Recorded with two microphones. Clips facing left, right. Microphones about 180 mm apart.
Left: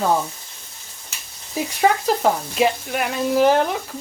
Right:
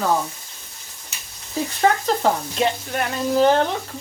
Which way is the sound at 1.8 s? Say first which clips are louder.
Left 1 dB; 10° left (ahead or behind).